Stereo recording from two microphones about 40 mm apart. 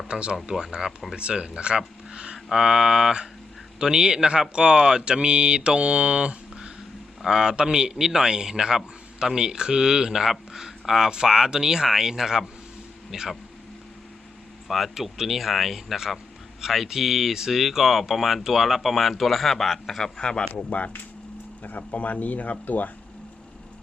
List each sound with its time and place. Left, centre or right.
0.1 s a man's voice: right
1.1 s a man's voice: right
14.7 s speech: centre
20.0 s speech: centre
20.6 s speech: left